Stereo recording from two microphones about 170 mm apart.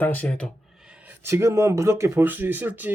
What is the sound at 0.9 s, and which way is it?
Speech, 10° right (ahead or behind).